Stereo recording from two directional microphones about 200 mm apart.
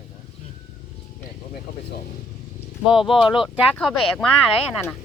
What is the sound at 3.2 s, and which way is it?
Speech, 25° left (ahead or behind).